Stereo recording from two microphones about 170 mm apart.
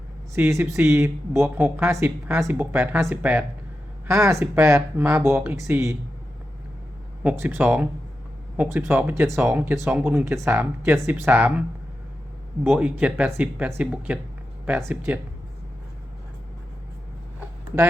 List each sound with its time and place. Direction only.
0.3 s speech: 15° right (ahead or behind)
7.2 s speech: 10° right (ahead or behind)
12.7 s speech: 5° right (ahead or behind)